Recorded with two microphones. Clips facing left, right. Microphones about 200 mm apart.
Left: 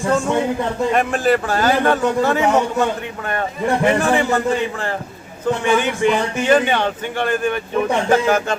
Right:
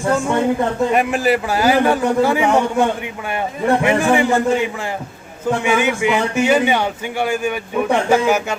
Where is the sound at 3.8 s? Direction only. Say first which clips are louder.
Left 1 dB; 15° right (ahead or behind).